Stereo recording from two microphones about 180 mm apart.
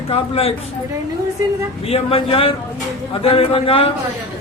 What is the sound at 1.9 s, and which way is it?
A man's voice, 30° left (ahead or behind).